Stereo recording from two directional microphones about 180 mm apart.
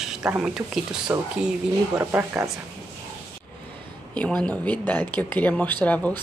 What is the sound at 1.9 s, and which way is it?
Speech, 15° right (ahead or behind).